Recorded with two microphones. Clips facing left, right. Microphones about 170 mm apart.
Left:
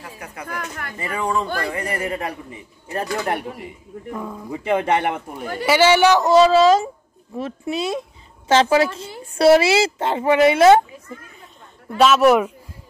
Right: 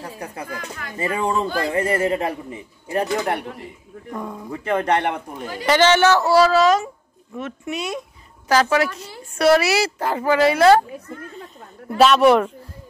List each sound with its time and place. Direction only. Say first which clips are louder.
0.0 s a man's voice: right 3 dB; 30° right (ahead or behind)
3.3 s a man's voice: even; 5° left (ahead or behind)
5.4 s speech: left 3 dB; 55° left (ahead or behind)
5.7 s a woman's voice: left 1 dB; 10° left (ahead or behind)
11.9 s a man's voice: even; centre (ahead or behind)